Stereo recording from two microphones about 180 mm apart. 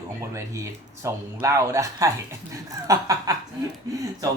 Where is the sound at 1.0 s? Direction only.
15° right (ahead or behind).